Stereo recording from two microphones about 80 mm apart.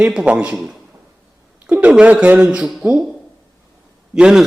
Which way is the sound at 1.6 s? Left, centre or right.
Centre.